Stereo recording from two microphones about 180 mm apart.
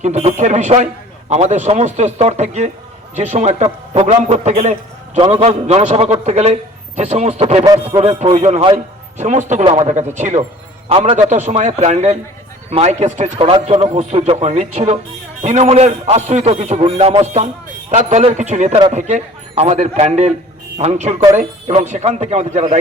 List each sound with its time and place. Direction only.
0.0 s a man's voice: 40° right (ahead or behind)